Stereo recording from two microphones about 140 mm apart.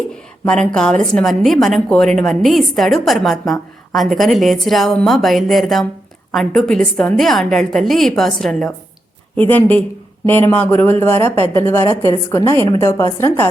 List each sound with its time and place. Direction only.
0.4 s a woman's voice: 5° left (ahead or behind)